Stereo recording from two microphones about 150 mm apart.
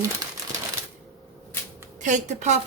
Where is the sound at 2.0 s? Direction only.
55° right (ahead or behind).